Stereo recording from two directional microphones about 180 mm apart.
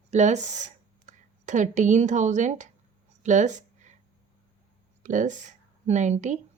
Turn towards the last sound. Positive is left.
turn(degrees=-40)  # may be behind; listen again after turning